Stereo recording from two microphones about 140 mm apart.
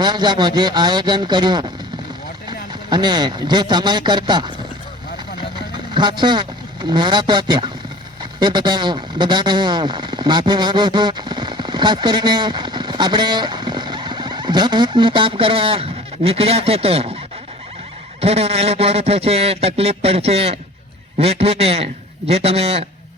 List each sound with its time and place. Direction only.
0.0 s speech: 30° right (ahead or behind)
5.7 s speech: 35° right (ahead or behind)
18.2 s speech: 50° right (ahead or behind)